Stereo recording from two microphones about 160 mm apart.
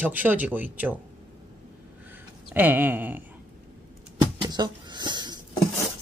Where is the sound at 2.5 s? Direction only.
10° right (ahead or behind).